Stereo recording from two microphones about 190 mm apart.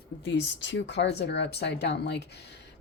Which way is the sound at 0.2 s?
70° left (ahead or behind).